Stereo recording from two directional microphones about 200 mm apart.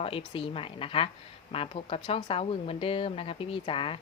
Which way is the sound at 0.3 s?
25° left (ahead or behind).